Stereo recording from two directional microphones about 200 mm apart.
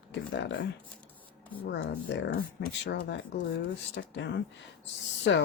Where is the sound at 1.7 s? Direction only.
60° left (ahead or behind).